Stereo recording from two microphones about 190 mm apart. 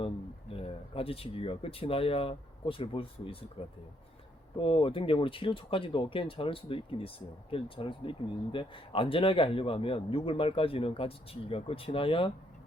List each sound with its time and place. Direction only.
0.5 s a man's voice: 30° left (ahead or behind)